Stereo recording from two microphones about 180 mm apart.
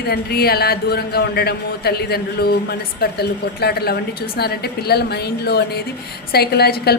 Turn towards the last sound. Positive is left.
turn(degrees=60)  # may be behind; listen again after turning